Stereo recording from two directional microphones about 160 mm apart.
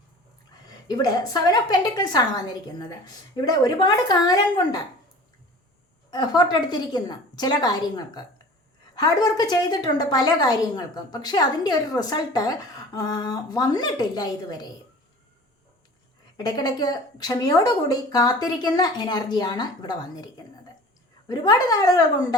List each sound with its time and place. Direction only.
0.9 s a woman's voice: 25° left (ahead or behind)
6.1 s a woman's voice: 25° left (ahead or behind)
16.4 s a woman's voice: 25° left (ahead or behind)